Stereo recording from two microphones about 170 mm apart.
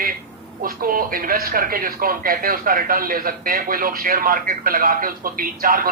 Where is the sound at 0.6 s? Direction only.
55° right (ahead or behind).